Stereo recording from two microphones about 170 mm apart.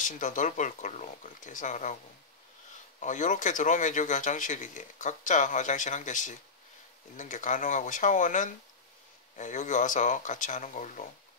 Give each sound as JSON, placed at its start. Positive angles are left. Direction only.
{"t": 0.0, "sound": "speech", "side_deg": 50}
{"t": 3.0, "sound": "speech", "side_deg": 45}